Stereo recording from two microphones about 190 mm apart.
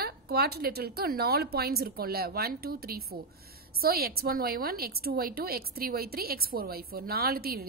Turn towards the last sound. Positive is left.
turn(degrees=-55)  # may be behind; listen again after turning